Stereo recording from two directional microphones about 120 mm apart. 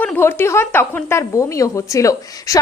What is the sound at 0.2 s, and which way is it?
Speech, 20° left (ahead or behind).